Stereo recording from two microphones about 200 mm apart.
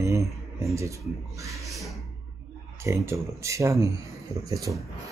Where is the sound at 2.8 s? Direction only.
15° right (ahead or behind).